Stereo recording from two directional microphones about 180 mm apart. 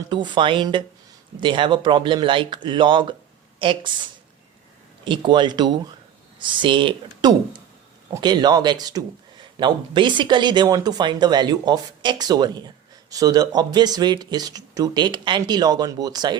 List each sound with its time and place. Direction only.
0.1 s speech: 25° right (ahead or behind)
5.0 s speech: 25° right (ahead or behind)